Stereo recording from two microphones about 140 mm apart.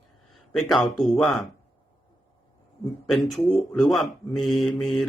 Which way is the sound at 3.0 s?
Centre (ahead or behind).